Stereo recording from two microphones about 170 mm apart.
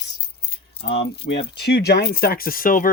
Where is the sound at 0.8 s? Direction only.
75° left (ahead or behind).